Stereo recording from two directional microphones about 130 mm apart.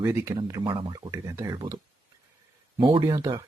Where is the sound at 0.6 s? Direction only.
40° right (ahead or behind).